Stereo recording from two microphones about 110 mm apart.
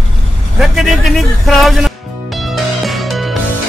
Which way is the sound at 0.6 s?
Centre (ahead or behind).